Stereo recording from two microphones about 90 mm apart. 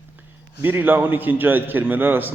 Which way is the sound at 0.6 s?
25° right (ahead or behind).